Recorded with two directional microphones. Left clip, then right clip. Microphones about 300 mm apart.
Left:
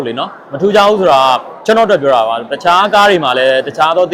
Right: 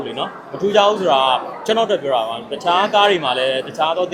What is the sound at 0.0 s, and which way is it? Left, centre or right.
A man's voice, left.